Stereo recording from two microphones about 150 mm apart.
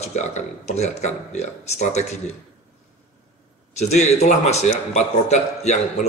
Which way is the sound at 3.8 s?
50° left (ahead or behind).